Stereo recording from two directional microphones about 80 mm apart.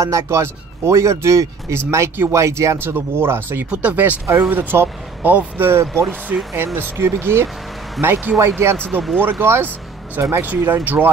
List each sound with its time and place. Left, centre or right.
0.0 s speech: right